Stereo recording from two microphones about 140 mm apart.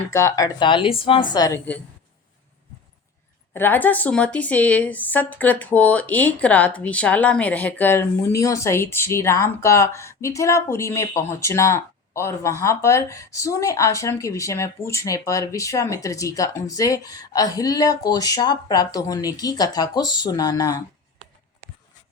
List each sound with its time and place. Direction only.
0.1 s speech: 20° left (ahead or behind)
0.7 s a woman's voice: 40° left (ahead or behind)
1.5 s a woman's voice: 10° left (ahead or behind)
3.5 s speech: 15° left (ahead or behind)